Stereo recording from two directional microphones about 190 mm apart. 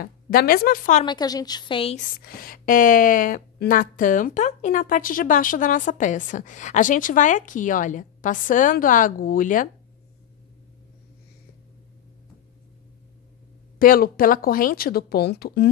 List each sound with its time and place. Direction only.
0.0 s speech: 50° left (ahead or behind)
1.0 s a woman's voice: 20° left (ahead or behind)
2.0 s speech: 50° left (ahead or behind)
13.7 s speech: 50° left (ahead or behind)